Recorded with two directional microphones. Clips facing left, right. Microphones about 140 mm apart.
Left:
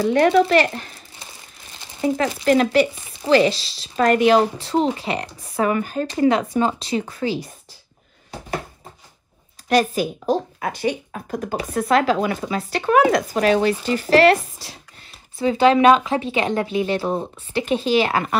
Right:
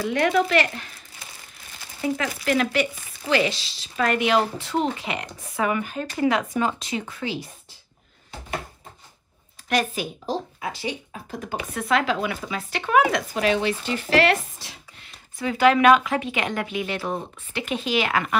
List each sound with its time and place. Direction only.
0.0 s speech: 35° left (ahead or behind)
2.0 s speech: 35° left (ahead or behind)
9.7 s speech: 35° left (ahead or behind)
10.2 s speech: 50° left (ahead or behind)
11.3 s speech: 40° left (ahead or behind)